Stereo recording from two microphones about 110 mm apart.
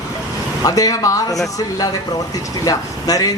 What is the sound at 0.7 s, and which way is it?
A man's voice, 35° left (ahead or behind).